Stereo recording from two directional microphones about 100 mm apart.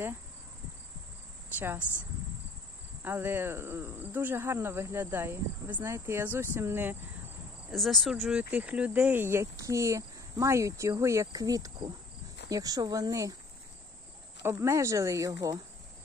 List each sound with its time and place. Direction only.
1.6 s speech: 20° right (ahead or behind)
7.7 s speech: centre (ahead or behind); by 13.4 s 35° right (ahead or behind)
14.4 s speech: 25° right (ahead or behind)